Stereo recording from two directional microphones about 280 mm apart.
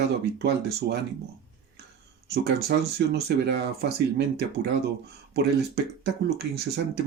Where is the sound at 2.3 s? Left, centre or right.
Right.